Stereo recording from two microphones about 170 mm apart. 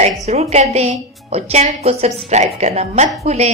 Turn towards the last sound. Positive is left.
turn(degrees=-40)  # may be behind; listen again after turning